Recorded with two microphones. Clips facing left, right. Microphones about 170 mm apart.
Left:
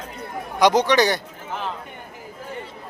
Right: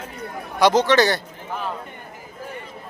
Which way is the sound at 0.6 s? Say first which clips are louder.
Right 1 dB; 15° left (ahead or behind).